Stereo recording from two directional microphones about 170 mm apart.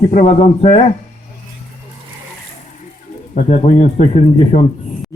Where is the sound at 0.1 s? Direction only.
40° left (ahead or behind).